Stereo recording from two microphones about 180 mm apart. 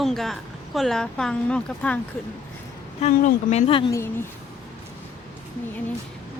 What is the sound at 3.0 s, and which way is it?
Speech, 35° left (ahead or behind).